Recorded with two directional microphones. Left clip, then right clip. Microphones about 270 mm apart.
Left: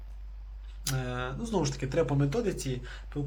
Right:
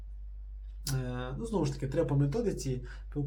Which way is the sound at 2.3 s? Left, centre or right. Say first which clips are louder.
Left 2 dB; centre.